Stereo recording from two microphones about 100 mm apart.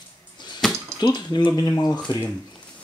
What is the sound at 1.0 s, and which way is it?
Speech, 45° left (ahead or behind).